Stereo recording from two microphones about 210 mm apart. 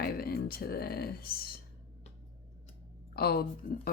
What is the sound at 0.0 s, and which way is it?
Speech, 45° left (ahead or behind).